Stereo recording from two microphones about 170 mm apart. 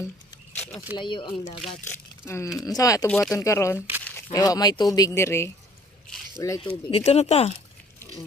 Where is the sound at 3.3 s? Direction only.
20° left (ahead or behind).